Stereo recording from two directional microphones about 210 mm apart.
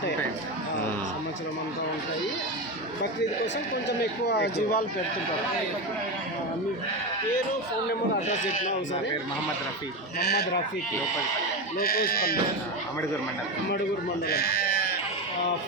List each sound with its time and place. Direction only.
3.0 s speech: 55° left (ahead or behind)
8.3 s a man's voice: 35° left (ahead or behind)
10.2 s speech: 50° left (ahead or behind)
11.8 s speech: 45° left (ahead or behind)
14.3 s sheep: 50° left (ahead or behind)